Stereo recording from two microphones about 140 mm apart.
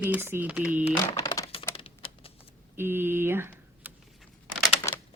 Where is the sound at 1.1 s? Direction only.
25° left (ahead or behind).